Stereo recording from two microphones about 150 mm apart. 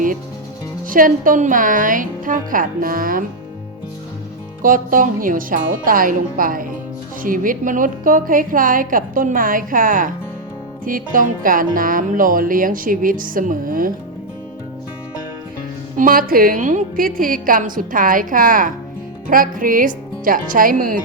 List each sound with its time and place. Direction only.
0.9 s a woman's voice: 65° right (ahead or behind)
4.6 s a woman's voice: 65° right (ahead or behind)
16.0 s a woman's voice: 70° right (ahead or behind)